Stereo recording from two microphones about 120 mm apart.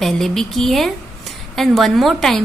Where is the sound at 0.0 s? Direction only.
5° left (ahead or behind).